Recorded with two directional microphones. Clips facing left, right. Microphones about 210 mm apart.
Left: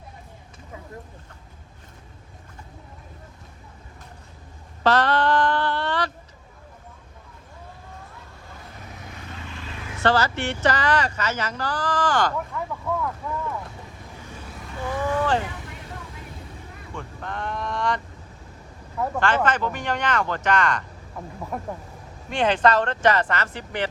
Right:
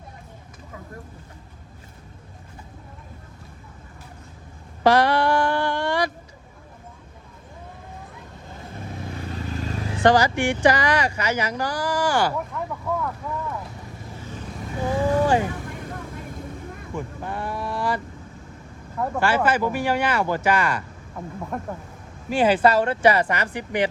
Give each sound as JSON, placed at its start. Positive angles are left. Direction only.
{"t": 4.8, "sound": "a sound", "side_deg": -10}
{"t": 9.0, "sound": "vehicle", "side_deg": -35}
{"t": 10.0, "sound": "speech", "side_deg": -15}
{"t": 14.8, "sound": "boat", "side_deg": -30}
{"t": 16.9, "sound": "speech", "side_deg": -10}